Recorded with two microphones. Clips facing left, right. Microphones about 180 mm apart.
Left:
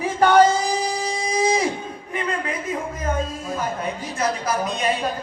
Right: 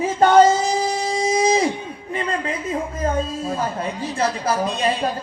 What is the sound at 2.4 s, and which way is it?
Speech, 30° right (ahead or behind).